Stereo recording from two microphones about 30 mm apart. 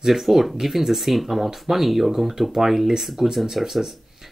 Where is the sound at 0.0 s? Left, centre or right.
Centre.